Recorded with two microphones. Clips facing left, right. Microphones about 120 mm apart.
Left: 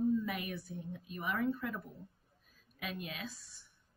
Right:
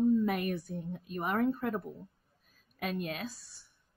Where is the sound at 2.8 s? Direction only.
50° right (ahead or behind).